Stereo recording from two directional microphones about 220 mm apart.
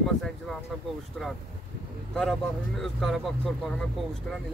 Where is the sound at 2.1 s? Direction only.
Centre (ahead or behind).